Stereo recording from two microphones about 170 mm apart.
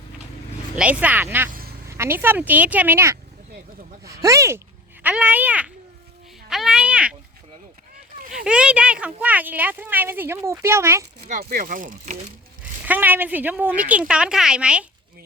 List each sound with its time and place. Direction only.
0.8 s speech: 10° right (ahead or behind)
1.5 s vehicle: 60° right (ahead or behind)
1.9 s a child's voice: 15° right (ahead or behind)
8.4 s speech: 5° right (ahead or behind)
11.3 s speech: 50° right (ahead or behind)
12.8 s speech: 10° right (ahead or behind)